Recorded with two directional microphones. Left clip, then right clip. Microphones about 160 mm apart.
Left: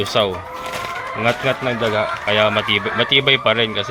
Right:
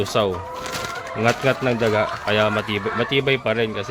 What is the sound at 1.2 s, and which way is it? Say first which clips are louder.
Speech: left 1 dB; 40° right (ahead or behind).